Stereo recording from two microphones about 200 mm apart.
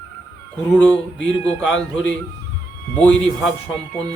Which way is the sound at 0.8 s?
5° left (ahead or behind).